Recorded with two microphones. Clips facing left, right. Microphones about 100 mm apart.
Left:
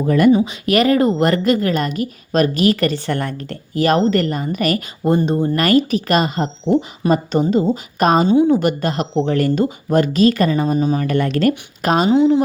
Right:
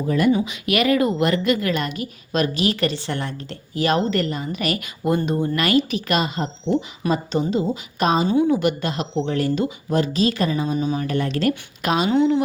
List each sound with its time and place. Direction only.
0.4 s a woman's voice: 40° left (ahead or behind)
5.0 s speech: 30° left (ahead or behind)
5.6 s a woman's voice: 40° left (ahead or behind)
7.0 s a woman's voice: 25° left (ahead or behind)
7.7 s a woman's voice: 50° left (ahead or behind)
11.0 s a woman's voice: 55° left (ahead or behind)
12.1 s speech: 15° left (ahead or behind)